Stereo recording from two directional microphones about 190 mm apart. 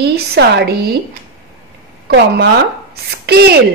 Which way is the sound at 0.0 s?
60° right (ahead or behind).